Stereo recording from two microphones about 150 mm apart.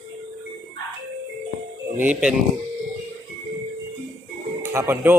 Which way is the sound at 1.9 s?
10° right (ahead or behind).